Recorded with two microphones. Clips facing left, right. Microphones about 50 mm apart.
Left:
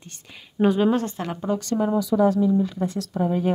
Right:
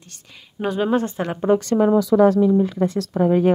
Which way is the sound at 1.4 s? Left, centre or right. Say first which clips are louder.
Right 8 dB; right.